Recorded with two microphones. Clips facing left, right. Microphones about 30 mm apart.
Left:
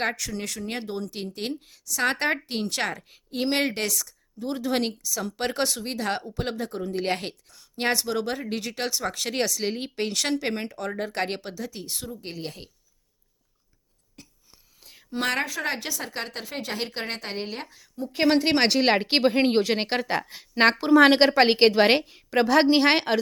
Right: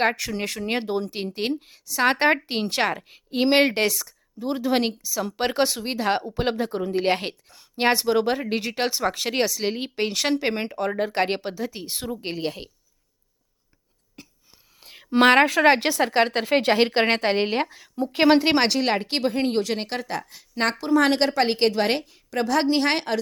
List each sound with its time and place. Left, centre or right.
0.0 s a woman's voice: right
4.4 s speech: centre
6.3 s a woman's voice: right
14.2 s a sound: centre
14.8 s a sound: right
15.1 s a woman's voice: right
18.1 s a woman's voice: centre
18.5 s speech: centre
18.8 s a woman's voice: centre